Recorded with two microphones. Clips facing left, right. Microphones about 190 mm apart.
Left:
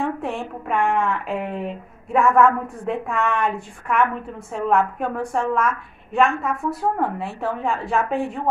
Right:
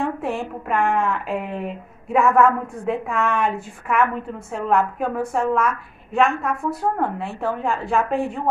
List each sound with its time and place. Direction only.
0.0 s speech: centre (ahead or behind)